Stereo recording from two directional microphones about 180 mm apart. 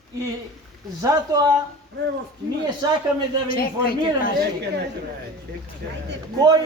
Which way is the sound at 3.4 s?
55° left (ahead or behind).